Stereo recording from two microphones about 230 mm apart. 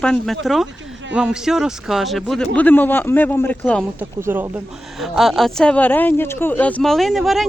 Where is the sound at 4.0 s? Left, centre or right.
Centre.